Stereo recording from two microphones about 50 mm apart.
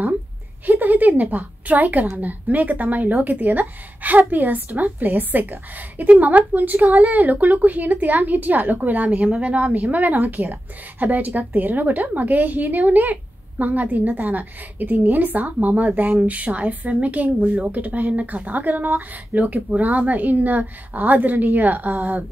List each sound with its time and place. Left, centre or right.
0.7 s a woman's voice: right